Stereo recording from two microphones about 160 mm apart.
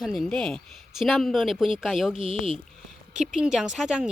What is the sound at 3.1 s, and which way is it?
Speech, 5° right (ahead or behind).